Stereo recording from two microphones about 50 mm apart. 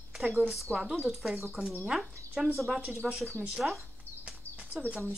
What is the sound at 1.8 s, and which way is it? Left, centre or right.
Speech, centre.